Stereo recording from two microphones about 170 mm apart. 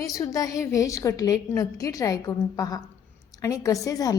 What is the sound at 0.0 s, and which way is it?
A woman's voice, 20° left (ahead or behind).